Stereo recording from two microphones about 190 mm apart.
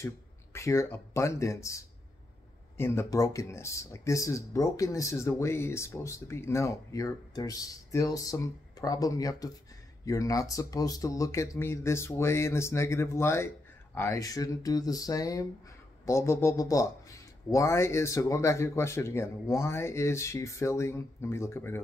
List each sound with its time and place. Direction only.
0.0 s speech: 15° left (ahead or behind)